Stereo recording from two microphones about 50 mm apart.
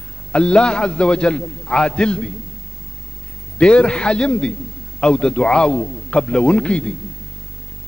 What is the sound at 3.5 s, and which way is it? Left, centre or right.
A man's voice, centre.